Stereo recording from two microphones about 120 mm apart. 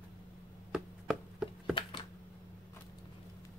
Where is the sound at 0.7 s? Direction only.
5° right (ahead or behind).